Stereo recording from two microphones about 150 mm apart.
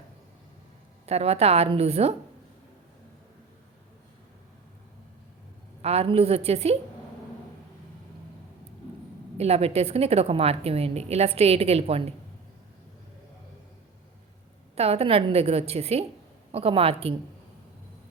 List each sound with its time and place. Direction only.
1.0 s a woman's voice: 45° right (ahead or behind)
5.8 s a woman's voice: 40° right (ahead or behind)
9.4 s a woman's voice: 45° right (ahead or behind)
14.8 s a woman's voice: 40° right (ahead or behind)